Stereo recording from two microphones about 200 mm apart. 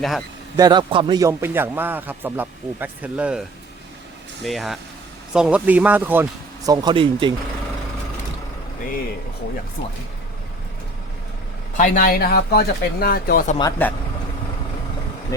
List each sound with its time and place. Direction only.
0.5 s a man's voice: 20° right (ahead or behind)
4.4 s a man's voice: centre (ahead or behind)
6.7 s speech: 25° right (ahead or behind)
11.8 s speech: 45° left (ahead or behind)
13.6 s speech: 15° left (ahead or behind)
15.3 s speech: 15° left (ahead or behind)